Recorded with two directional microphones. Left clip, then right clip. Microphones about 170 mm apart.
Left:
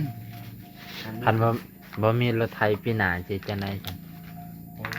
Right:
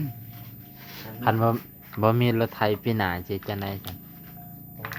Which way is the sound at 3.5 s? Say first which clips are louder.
Even; 25° right (ahead or behind).